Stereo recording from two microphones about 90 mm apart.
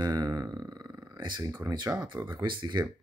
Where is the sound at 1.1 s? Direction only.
55° right (ahead or behind).